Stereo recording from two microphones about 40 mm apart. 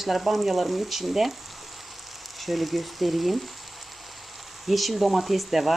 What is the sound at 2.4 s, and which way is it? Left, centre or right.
Frying, centre.